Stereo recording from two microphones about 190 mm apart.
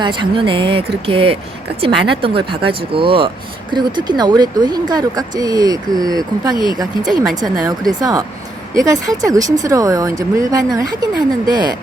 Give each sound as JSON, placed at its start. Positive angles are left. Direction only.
{"t": 0.0, "sound": "speech", "side_deg": -25}